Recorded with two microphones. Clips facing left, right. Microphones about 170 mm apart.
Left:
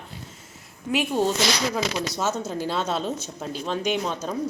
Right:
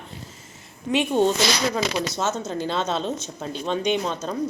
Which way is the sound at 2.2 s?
10° left (ahead or behind).